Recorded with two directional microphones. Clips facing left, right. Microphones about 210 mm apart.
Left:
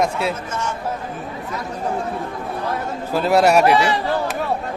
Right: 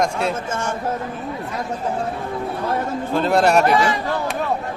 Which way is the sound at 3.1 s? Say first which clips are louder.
Left 1 dB; 5° left (ahead or behind).